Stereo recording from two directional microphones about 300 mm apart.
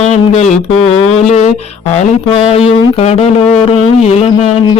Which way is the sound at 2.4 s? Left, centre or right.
Left.